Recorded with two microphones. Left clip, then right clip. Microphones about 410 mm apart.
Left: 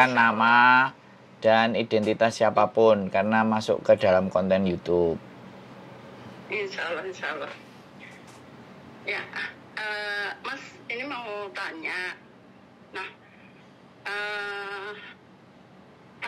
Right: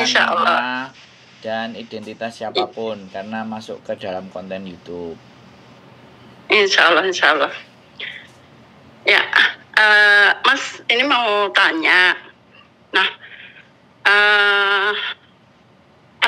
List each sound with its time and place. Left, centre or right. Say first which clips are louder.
0.6 s speech: left 4 dB; left
6.5 s speech: right 18 dB; right
9.0 s speech: right 18 dB; right
14.0 s speech: right 19 dB; right